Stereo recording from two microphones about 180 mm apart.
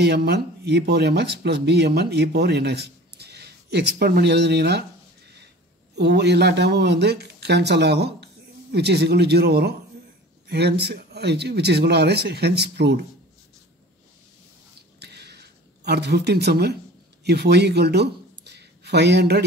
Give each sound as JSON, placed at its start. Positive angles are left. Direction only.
{"t": 0.0, "sound": "speech", "side_deg": -65}
{"t": 5.9, "sound": "speech", "side_deg": -70}
{"t": 15.0, "sound": "a sound", "side_deg": -65}
{"t": 17.2, "sound": "speech", "side_deg": -65}